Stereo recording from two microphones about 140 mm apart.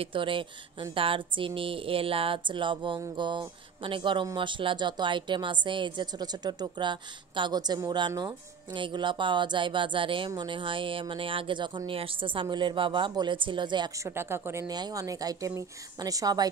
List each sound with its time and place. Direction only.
0.0 s speech: 40° right (ahead or behind)